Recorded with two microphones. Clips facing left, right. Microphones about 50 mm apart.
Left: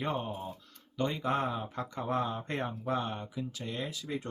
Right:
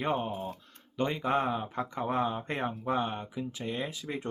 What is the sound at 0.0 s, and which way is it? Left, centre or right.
Speech, right.